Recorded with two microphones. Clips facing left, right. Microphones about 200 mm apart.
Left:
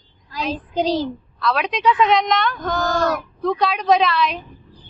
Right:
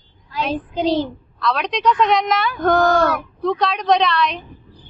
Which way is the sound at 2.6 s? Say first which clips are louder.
Right 7 dB; 55° right (ahead or behind).